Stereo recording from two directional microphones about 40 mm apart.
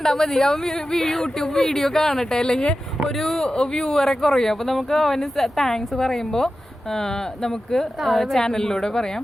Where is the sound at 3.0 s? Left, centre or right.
Centre.